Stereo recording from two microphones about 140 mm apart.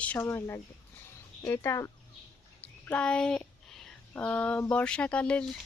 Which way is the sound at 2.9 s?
5° left (ahead or behind).